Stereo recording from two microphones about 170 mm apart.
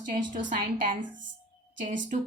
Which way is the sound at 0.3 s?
50° right (ahead or behind).